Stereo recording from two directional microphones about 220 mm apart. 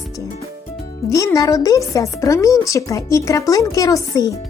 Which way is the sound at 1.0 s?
15° left (ahead or behind).